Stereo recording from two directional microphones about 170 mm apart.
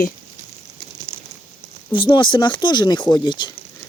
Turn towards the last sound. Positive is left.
turn(degrees=25)  # may be behind; listen again after turning